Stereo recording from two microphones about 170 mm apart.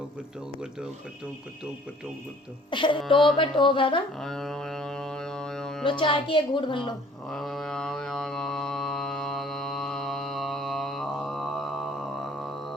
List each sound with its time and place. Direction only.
2.6 s a woman's voice: 30° left (ahead or behind)
3.3 s a sound: 30° left (ahead or behind)
4.2 s music: centre (ahead or behind)
5.8 s a woman's voice: 30° left (ahead or behind)
7.3 s mantra: centre (ahead or behind)